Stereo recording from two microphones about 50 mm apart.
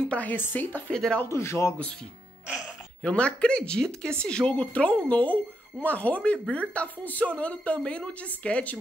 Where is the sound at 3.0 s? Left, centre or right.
Left.